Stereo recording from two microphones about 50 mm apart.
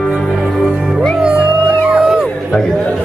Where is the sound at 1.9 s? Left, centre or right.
Centre.